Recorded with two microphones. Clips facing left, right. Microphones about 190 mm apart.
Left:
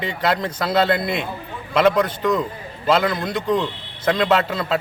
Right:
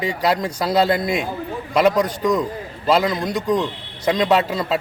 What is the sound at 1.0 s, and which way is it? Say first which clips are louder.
Speech: right 2 dB; 40° right (ahead or behind).